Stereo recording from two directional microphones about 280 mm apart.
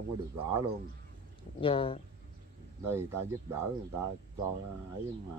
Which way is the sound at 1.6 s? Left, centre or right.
Centre.